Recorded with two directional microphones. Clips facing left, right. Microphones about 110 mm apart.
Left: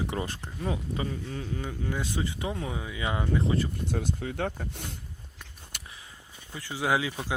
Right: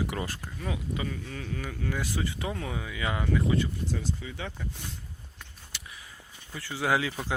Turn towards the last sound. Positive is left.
turn(degrees=15)  # may be behind; listen again after turning